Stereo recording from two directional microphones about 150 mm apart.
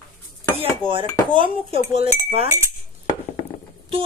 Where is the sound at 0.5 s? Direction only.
35° right (ahead or behind).